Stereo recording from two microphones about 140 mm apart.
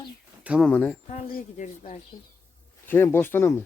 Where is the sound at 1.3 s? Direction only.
75° left (ahead or behind).